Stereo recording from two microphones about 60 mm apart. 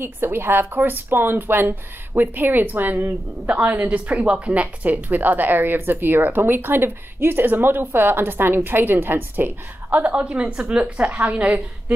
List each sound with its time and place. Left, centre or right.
0.0 s a woman's voice: right
4.1 s a woman's voice: right